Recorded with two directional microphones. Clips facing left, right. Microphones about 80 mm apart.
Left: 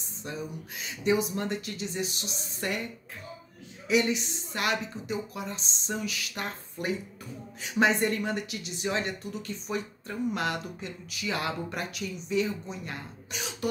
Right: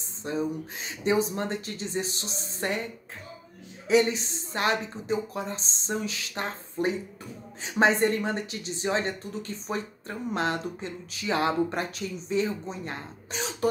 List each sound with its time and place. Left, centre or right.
0.2 s speech: right
3.8 s speech: right